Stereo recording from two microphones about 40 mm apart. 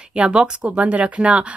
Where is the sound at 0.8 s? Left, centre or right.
Right.